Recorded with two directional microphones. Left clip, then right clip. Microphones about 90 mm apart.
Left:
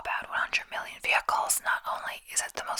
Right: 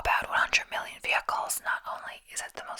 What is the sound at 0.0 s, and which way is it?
Whispering, 30° right (ahead or behind).